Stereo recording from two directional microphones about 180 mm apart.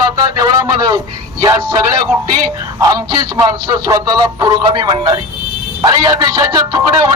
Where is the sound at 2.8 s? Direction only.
20° right (ahead or behind).